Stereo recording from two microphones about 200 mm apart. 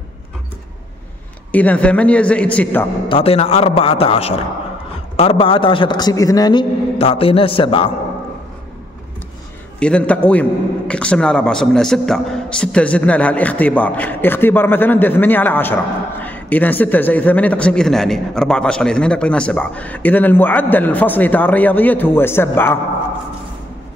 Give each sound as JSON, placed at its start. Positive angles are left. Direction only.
{"t": 1.5, "sound": "a man's voice", "side_deg": 5}
{"t": 3.1, "sound": "a man's voice", "side_deg": 30}
{"t": 9.8, "sound": "a man's voice", "side_deg": 5}